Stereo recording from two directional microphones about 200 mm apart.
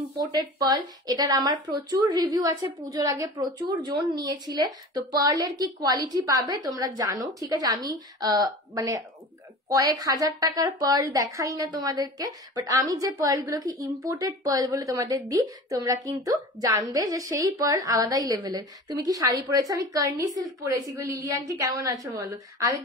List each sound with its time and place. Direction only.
0.3 s a woman's voice: 20° right (ahead or behind)